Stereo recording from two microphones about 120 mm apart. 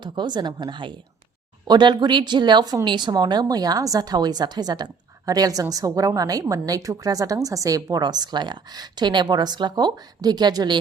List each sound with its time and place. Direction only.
0.0 s speech: 40° right (ahead or behind)